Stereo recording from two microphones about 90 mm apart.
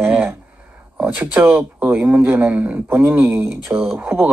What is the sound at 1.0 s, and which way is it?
Speech, 15° right (ahead or behind).